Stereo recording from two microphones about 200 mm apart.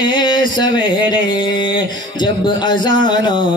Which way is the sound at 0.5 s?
65° right (ahead or behind).